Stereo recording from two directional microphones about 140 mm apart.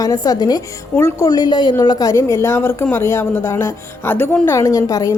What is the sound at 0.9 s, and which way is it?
Speech, 15° left (ahead or behind).